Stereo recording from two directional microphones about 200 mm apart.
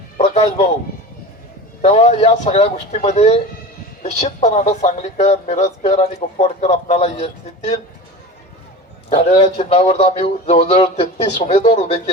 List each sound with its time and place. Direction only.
0.2 s music: 35° left (ahead or behind)
1.8 s speech: 30° left (ahead or behind)
9.0 s a man's voice: 25° left (ahead or behind)
11.0 s a man's voice: 40° left (ahead or behind)